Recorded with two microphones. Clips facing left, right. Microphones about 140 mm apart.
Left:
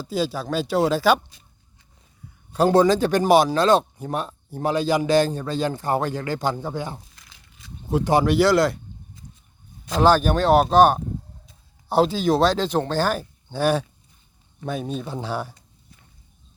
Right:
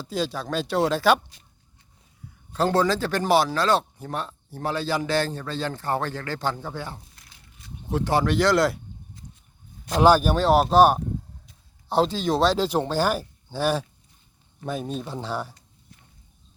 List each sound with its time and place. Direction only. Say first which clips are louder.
0.0 s speech: left 3 dB; 5° left (ahead or behind)
2.5 s a man's voice: left 5 dB; 15° left (ahead or behind)
7.1 s crumpling: left 1 dB; 90° left
7.9 s a man's voice: left 4 dB; 15° left (ahead or behind)
10.0 s speech: even; 10° right (ahead or behind)